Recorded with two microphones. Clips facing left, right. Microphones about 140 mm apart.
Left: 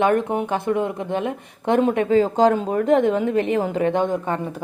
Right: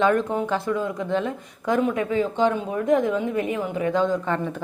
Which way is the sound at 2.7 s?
70° left (ahead or behind).